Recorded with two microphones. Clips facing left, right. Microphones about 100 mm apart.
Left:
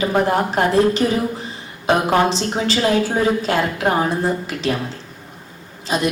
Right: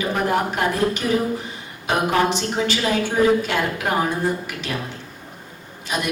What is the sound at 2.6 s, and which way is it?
A woman's voice, 35° left (ahead or behind).